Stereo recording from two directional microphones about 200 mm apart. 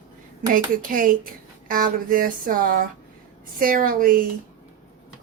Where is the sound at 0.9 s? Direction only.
45° right (ahead or behind).